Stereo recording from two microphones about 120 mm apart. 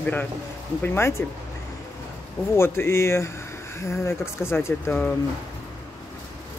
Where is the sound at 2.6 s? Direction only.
20° left (ahead or behind).